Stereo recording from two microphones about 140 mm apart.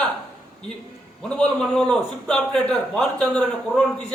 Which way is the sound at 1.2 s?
5° left (ahead or behind).